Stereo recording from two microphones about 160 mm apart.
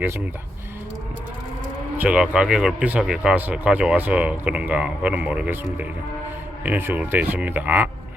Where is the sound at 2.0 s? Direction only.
5° right (ahead or behind).